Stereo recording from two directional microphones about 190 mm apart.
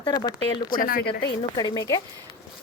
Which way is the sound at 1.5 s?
20° left (ahead or behind).